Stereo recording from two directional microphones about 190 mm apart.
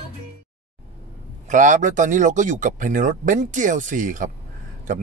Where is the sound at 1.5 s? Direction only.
40° right (ahead or behind).